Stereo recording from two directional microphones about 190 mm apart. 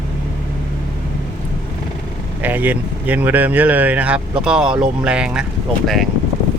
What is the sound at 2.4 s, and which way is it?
Speech, 10° right (ahead or behind).